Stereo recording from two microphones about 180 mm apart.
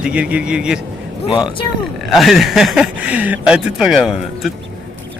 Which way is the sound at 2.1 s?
Centre (ahead or behind).